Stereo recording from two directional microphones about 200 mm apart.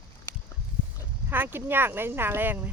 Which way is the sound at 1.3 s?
10° right (ahead or behind).